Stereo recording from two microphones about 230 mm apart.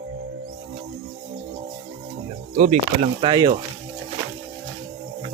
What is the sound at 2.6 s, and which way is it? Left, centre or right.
Speech, right.